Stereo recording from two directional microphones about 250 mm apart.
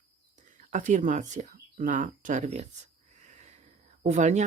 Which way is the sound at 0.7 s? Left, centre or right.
Right.